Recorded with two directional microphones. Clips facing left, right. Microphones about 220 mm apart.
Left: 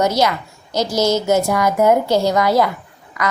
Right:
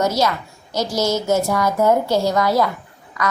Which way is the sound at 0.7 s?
Centre (ahead or behind).